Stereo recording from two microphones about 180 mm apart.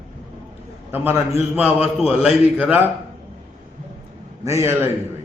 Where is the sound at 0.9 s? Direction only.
10° right (ahead or behind).